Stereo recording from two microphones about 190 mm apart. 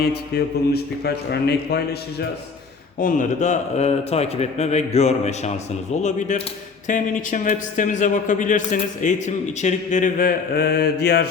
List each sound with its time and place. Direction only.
0.0 s a man's voice: 60° left (ahead or behind)
3.0 s a man's voice: 45° left (ahead or behind)